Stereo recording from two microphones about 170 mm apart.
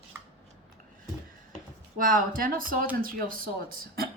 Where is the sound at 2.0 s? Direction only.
55° right (ahead or behind).